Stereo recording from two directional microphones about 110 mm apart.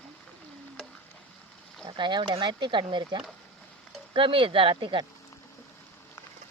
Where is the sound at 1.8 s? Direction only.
45° right (ahead or behind).